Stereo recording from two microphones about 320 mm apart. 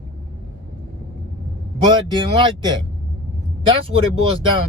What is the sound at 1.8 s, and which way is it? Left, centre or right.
Speech, centre.